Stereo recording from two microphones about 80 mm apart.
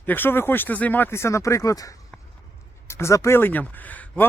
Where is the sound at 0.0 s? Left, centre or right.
Left.